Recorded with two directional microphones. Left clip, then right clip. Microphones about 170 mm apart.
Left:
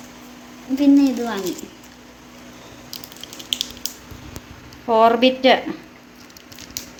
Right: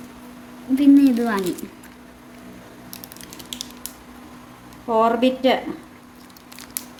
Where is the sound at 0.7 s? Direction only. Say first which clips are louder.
Right 1 dB; 90° right.